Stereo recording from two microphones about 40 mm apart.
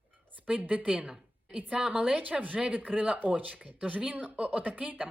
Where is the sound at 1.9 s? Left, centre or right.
Right.